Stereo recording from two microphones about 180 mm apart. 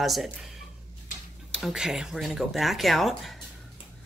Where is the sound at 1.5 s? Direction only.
Centre (ahead or behind).